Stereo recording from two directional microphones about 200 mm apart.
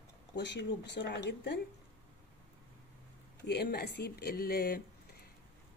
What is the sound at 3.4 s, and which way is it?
Speech, 55° left (ahead or behind).